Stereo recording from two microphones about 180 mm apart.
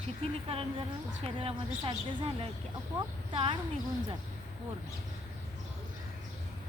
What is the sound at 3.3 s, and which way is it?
Speech, 30° right (ahead or behind).